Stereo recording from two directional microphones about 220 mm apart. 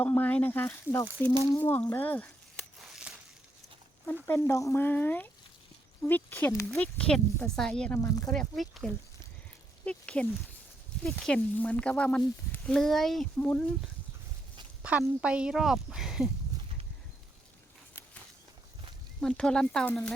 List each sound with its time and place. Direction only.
0.0 s speech: 5° left (ahead or behind)
2.8 s a sound: centre (ahead or behind)
4.0 s speech: 10° left (ahead or behind)
14.8 s speech: 5° right (ahead or behind)
19.2 s speech: 5° left (ahead or behind)